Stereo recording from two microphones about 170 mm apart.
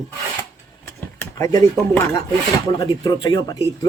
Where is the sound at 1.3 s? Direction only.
15° left (ahead or behind).